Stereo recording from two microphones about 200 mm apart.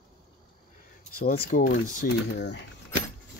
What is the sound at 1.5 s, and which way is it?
Speech, 45° left (ahead or behind).